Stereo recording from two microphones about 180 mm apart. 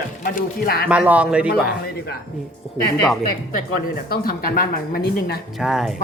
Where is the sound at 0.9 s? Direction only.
5° right (ahead or behind).